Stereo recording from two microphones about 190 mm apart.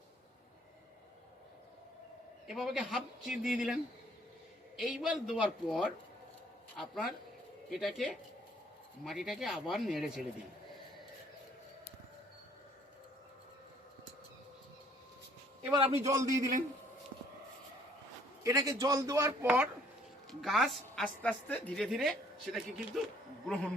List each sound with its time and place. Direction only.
2.5 s a woman's voice: 5° right (ahead or behind)
4.8 s a woman's voice: 5° right (ahead or behind)
7.7 s a woman's voice: centre (ahead or behind)
15.7 s a man's voice: 30° right (ahead or behind)
16.0 s a man's voice: 20° right (ahead or behind)
16.3 s a man's voice: 45° right (ahead or behind)
18.4 s a man's voice: 15° right (ahead or behind); by 23.1 s centre (ahead or behind)